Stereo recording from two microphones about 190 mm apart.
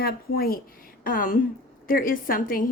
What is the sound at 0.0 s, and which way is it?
Speech, 50° left (ahead or behind).